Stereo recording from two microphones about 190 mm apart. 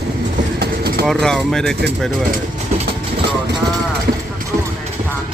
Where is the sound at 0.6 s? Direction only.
55° right (ahead or behind).